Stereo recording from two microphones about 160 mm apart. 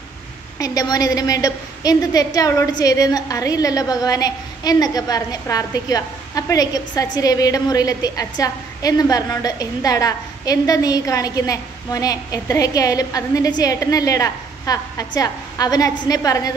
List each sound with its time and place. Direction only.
0.6 s a woman's voice: 25° left (ahead or behind)